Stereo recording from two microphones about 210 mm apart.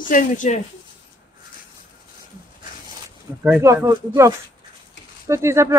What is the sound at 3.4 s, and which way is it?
Speech, 10° right (ahead or behind).